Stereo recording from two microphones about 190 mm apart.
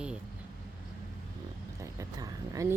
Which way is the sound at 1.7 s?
15° right (ahead or behind).